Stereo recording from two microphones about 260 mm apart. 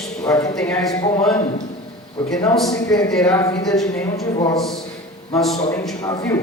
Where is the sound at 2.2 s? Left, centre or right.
Centre.